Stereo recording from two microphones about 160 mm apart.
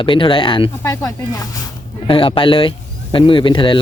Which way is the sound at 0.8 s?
20° left (ahead or behind).